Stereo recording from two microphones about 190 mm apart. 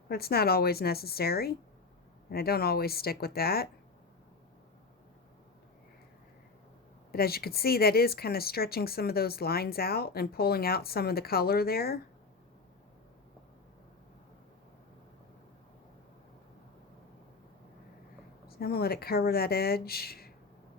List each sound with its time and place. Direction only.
0.1 s speech: 55° left (ahead or behind)
7.1 s speech: 55° left (ahead or behind)
18.4 s speech: 55° left (ahead or behind)